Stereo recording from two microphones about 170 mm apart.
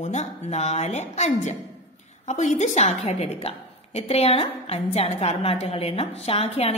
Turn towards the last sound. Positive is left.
turn(degrees=35)  # may be behind; listen again after turning